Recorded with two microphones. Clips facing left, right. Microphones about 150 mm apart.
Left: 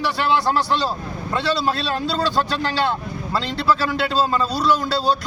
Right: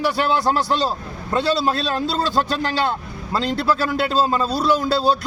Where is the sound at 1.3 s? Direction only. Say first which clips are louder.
Right 2 dB; 45° right (ahead or behind).